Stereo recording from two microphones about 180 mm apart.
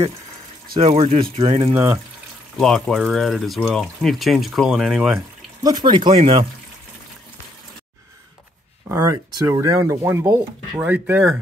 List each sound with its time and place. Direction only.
0.7 s speech: 30° right (ahead or behind)
1.7 s speech: 10° right (ahead or behind)
2.5 s speech: centre (ahead or behind)
5.6 s speech: 20° right (ahead or behind)
8.8 s speech: 15° right (ahead or behind)
10.8 s speech: 10° right (ahead or behind)